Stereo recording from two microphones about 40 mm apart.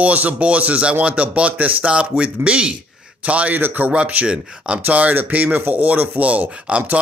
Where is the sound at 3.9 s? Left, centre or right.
Right.